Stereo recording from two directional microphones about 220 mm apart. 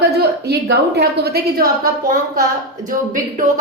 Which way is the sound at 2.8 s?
35° right (ahead or behind).